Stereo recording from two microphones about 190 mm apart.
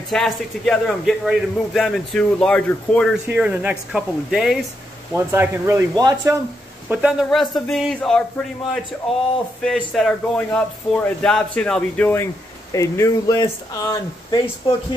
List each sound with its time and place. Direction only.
0.1 s a man's voice: 5° left (ahead or behind)
3.3 s a man's voice: 10° right (ahead or behind)
5.1 s speech: 10° right (ahead or behind)
6.9 s a man's voice: 5° right (ahead or behind)
9.6 s a man's voice: centre (ahead or behind); by 15.0 s 25° left (ahead or behind)